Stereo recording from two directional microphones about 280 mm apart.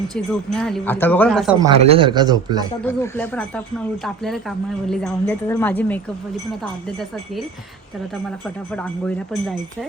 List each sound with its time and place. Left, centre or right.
0.1 s speech: centre
1.8 s speech: centre
2.8 s speech: centre
8.7 s speech: centre